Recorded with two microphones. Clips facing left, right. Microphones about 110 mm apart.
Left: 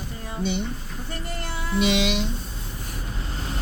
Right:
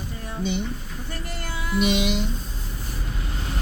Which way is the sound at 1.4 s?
30° left (ahead or behind).